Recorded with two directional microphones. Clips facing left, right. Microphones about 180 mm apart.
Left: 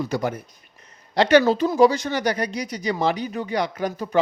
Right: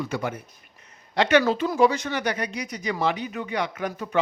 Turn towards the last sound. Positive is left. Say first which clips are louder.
# left 4 dB
turn(degrees=35)  # may be behind; listen again after turning